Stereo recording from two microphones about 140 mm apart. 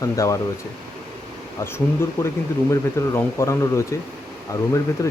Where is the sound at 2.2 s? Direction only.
20° left (ahead or behind).